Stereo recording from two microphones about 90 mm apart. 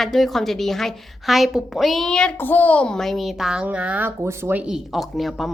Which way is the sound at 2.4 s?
20° left (ahead or behind).